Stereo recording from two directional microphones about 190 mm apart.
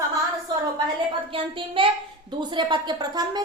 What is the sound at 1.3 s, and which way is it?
A woman's voice, 30° right (ahead or behind).